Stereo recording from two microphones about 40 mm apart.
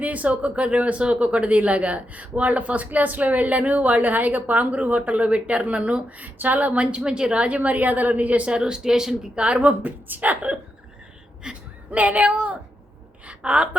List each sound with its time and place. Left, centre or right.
0.0 s speech: right
6.9 s speech: right
8.4 s speech: right
9.3 s speech: right
9.6 s speech: right
11.4 s speech: centre
11.9 s speech: right
13.2 s a sound: right